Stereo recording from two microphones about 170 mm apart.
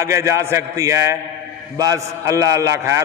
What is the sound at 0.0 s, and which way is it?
A man's voice, 15° right (ahead or behind).